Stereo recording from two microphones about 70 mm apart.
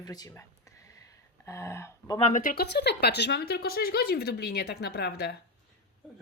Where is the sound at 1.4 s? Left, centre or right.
Left.